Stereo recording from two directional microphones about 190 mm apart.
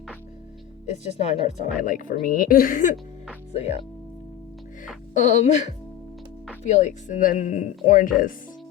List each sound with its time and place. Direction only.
0.9 s a woman's voice: 35° left (ahead or behind)
3.5 s speech: 35° left (ahead or behind)
5.1 s a woman's voice: 40° left (ahead or behind)